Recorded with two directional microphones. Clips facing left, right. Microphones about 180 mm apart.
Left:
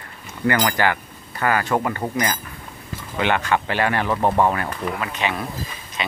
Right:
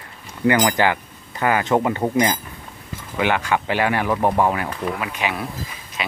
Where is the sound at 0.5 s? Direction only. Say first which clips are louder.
Right 2 dB; 15° right (ahead or behind).